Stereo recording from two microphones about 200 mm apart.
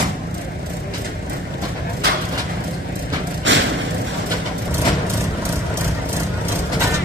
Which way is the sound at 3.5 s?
70° right (ahead or behind).